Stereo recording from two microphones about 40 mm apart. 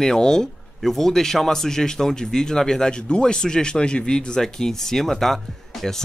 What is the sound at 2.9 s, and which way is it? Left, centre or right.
Speech, left.